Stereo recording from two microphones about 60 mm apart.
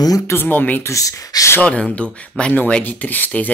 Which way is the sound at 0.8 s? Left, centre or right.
Left.